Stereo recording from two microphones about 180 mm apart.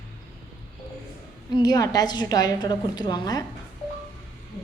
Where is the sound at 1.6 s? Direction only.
20° left (ahead or behind).